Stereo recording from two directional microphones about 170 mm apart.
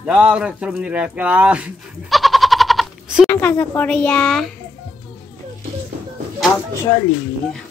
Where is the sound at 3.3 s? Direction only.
15° left (ahead or behind).